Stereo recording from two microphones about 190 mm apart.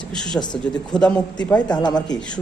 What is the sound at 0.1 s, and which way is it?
Speech, 5° left (ahead or behind).